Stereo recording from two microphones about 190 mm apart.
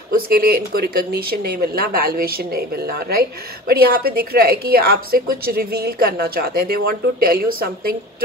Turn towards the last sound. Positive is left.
turn(degrees=-50)  # may be behind; listen again after turning